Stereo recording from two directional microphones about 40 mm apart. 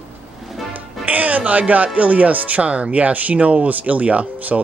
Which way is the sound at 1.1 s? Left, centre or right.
Right.